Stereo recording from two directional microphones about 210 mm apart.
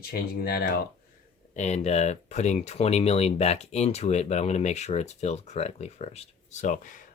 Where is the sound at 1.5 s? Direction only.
35° left (ahead or behind).